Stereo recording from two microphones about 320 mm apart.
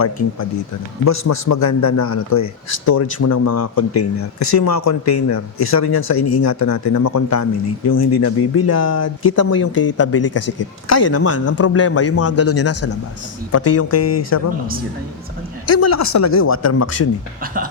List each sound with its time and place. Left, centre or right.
1.0 s a man's voice: left
6.0 s speech: left
6.3 s a man's voice: left
9.5 s speech: left
9.8 s speech: left
15.6 s speech: left
17.4 s speech: right